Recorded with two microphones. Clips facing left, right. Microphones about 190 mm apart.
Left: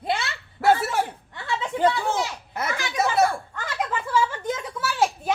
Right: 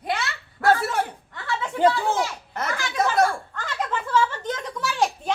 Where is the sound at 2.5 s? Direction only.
10° left (ahead or behind).